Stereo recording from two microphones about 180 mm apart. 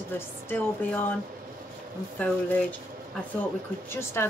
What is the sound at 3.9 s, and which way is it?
Speech, 15° left (ahead or behind).